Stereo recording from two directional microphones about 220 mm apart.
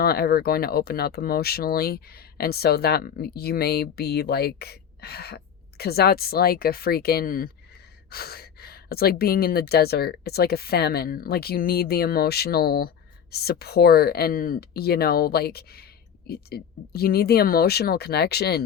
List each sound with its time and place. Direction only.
0.0 s speech: 45° left (ahead or behind)